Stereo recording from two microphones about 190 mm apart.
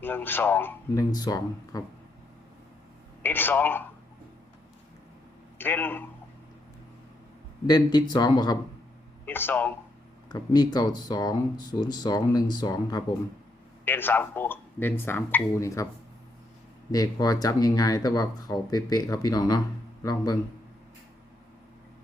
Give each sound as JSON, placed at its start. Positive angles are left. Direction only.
{"t": 0.0, "sound": "speech", "side_deg": 10}
{"t": 3.2, "sound": "a man's voice", "side_deg": 10}
{"t": 5.5, "sound": "speech", "side_deg": 10}
{"t": 7.7, "sound": "speech", "side_deg": 20}
{"t": 9.2, "sound": "speech", "side_deg": 10}
{"t": 10.2, "sound": "speech", "side_deg": 20}
{"t": 16.9, "sound": "speech", "side_deg": 20}